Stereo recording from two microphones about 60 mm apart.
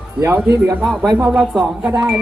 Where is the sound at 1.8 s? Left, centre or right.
Centre.